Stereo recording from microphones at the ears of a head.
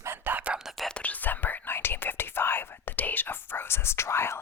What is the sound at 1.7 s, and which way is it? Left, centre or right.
Speech, left.